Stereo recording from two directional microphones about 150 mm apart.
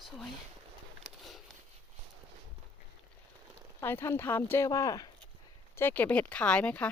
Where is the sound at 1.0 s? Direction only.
Centre (ahead or behind).